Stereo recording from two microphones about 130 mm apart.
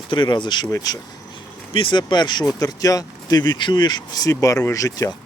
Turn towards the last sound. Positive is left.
turn(degrees=25)  # may be behind; listen again after turning